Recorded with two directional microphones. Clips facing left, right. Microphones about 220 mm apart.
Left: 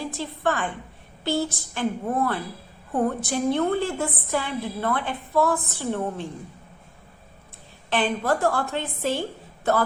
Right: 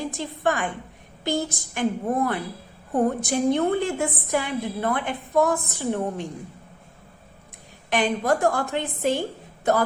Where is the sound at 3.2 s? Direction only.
15° right (ahead or behind).